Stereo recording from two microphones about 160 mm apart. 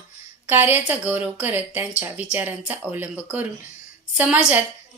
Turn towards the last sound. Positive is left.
turn(degrees=-5)  # may be behind; listen again after turning